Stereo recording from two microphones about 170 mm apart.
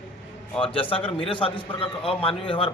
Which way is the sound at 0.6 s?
30° left (ahead or behind).